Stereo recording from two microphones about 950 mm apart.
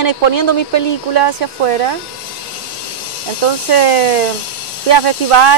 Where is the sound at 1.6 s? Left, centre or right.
Right.